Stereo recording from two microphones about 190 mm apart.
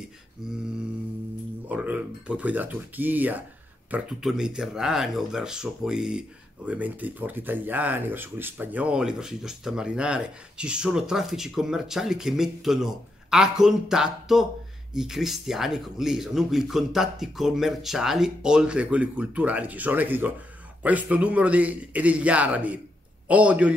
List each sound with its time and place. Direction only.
1.7 s a man's voice: 10° right (ahead or behind)